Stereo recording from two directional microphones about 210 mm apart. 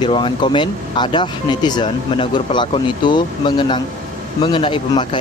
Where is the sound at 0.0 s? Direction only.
25° left (ahead or behind).